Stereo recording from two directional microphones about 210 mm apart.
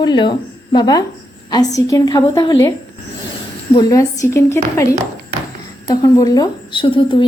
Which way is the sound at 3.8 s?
15° left (ahead or behind).